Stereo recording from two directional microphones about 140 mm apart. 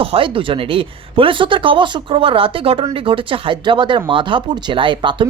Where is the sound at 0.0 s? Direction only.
40° right (ahead or behind).